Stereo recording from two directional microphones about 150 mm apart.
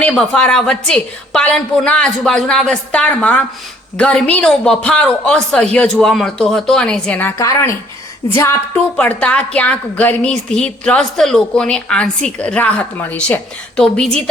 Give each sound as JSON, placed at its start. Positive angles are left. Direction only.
{"t": 0.0, "sound": "speech", "side_deg": 5}
{"t": 7.3, "sound": "speech", "side_deg": 20}
{"t": 9.0, "sound": "a woman's voice", "side_deg": 10}